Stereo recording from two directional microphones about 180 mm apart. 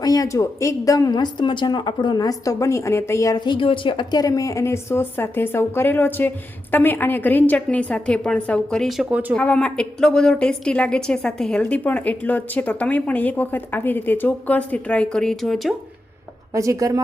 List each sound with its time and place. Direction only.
0.0 s a woman's voice: 20° left (ahead or behind); by 9.4 s 5° right (ahead or behind)
9.4 s a woman's voice: 5° left (ahead or behind)
16.6 s a woman's voice: 15° right (ahead or behind)